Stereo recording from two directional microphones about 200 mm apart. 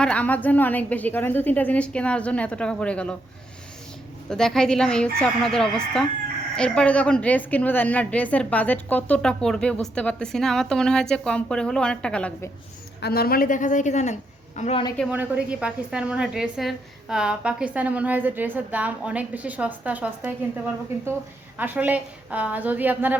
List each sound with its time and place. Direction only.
0.0 s a woman's voice: 5° left (ahead or behind)
4.3 s a woman's voice: centre (ahead or behind)
13.0 s a woman's voice: 50° left (ahead or behind); by 14.8 s 35° left (ahead or behind)
15.1 s a woman's voice: 5° right (ahead or behind)
21.6 s a woman's voice: 10° right (ahead or behind)